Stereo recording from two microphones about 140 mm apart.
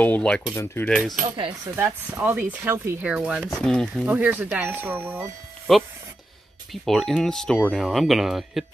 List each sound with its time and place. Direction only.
0.0 s cutlery: 10° left (ahead or behind)
1.3 s speech: 30° right (ahead or behind)
1.8 s speech: 10° right (ahead or behind); by 4.0 s 5° left (ahead or behind)
4.0 s speech: 10° right (ahead or behind)
5.7 s speech: centre (ahead or behind)